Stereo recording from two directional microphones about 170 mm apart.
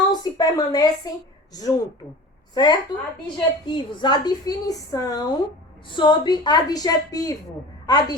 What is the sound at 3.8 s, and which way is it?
A woman's voice, 25° left (ahead or behind).